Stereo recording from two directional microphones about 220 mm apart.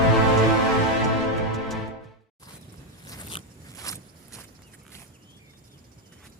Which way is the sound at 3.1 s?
15° left (ahead or behind).